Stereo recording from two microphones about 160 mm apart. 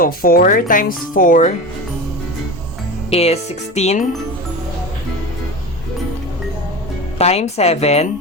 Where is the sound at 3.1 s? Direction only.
40° left (ahead or behind).